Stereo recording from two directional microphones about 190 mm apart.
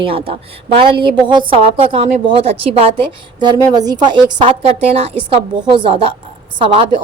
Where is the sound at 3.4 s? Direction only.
20° right (ahead or behind).